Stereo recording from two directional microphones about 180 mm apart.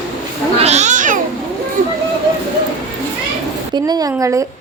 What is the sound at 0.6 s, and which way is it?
Cat, 40° right (ahead or behind).